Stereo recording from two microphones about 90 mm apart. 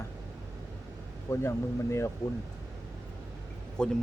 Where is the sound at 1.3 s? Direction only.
30° left (ahead or behind).